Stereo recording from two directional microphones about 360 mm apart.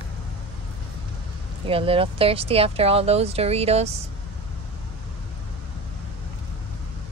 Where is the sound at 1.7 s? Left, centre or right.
Centre.